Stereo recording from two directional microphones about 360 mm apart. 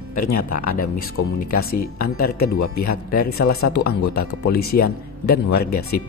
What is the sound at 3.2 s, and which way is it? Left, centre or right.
Speech, left.